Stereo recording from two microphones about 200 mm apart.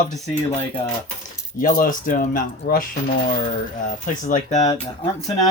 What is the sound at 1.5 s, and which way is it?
Speech, 45° left (ahead or behind).